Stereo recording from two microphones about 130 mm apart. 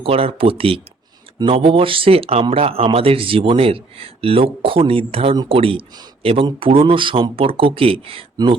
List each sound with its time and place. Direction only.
0.0 s speech: 50° right (ahead or behind)